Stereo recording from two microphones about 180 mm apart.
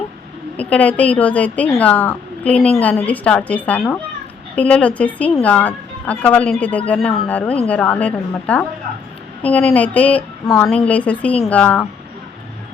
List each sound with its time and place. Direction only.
0.5 s a woman's voice: 10° left (ahead or behind)